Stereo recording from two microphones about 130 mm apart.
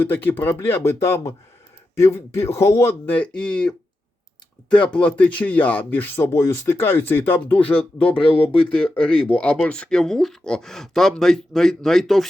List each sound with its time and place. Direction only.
0.0 s speech: 15° left (ahead or behind)
3.2 s speech: 5° left (ahead or behind)
8.2 s speech: 45° left (ahead or behind)
8.5 s speech: 10° left (ahead or behind)